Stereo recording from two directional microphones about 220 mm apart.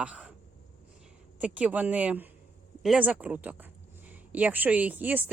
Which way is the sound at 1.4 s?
5° right (ahead or behind).